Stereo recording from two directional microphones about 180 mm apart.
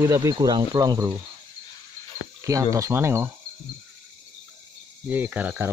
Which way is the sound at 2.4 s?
15° right (ahead or behind).